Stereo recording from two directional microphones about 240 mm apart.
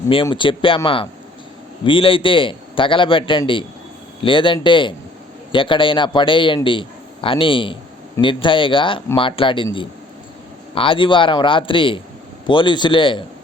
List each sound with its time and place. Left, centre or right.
0.1 s a man's voice: left